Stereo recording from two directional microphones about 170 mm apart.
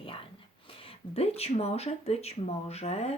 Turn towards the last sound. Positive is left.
turn(degrees=40)  # may be behind; listen again after turning